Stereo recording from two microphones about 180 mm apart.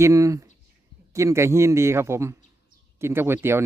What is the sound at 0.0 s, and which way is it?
Speech, 15° right (ahead or behind).